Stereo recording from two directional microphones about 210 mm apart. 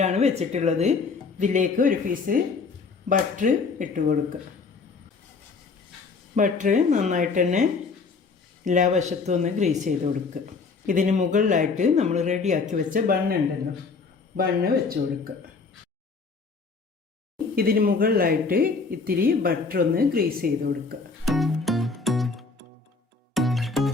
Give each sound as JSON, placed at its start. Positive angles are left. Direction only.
{"t": 0.0, "sound": "speech", "side_deg": -30}
{"t": 6.3, "sound": "speech", "side_deg": -35}
{"t": 14.3, "sound": "speech", "side_deg": -45}
{"t": 17.5, "sound": "speech", "side_deg": -45}
{"t": 21.2, "sound": "music", "side_deg": 0}